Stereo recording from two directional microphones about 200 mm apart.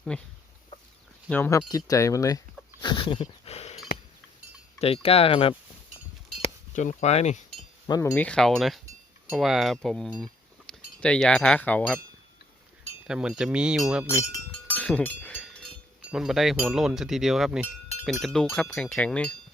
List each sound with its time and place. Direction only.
0.1 s speech: 5° left (ahead or behind)
1.3 s wind chime: 15° left (ahead or behind)
2.8 s dog: 25° left (ahead or behind)
4.8 s speech: 30° left (ahead or behind)
7.9 s speech: 20° left (ahead or behind)
8.1 s speech: 5° left (ahead or behind)
13.1 s speech: 5° right (ahead or behind)
14.1 s speech: 10° left (ahead or behind)
15.4 s a sound: 5° left (ahead or behind)
16.0 s speech: 5° right (ahead or behind)